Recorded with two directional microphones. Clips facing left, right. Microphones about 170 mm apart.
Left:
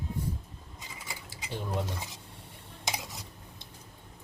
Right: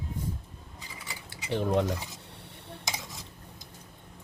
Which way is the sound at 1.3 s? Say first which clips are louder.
Right 9 dB; 65° right (ahead or behind).